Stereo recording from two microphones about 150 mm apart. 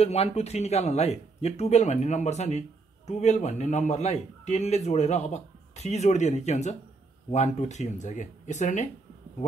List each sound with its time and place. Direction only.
0.0 s a man's voice: 45° left (ahead or behind)